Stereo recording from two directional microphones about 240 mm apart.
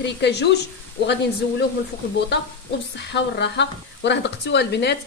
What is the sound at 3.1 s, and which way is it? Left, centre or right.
Speech, left.